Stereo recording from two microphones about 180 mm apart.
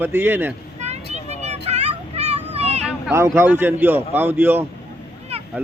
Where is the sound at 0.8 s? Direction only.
40° right (ahead or behind).